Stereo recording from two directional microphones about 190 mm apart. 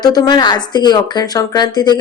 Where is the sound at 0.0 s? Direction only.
20° left (ahead or behind).